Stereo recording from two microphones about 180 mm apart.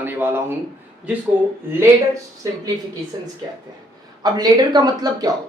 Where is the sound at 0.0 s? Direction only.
10° right (ahead or behind).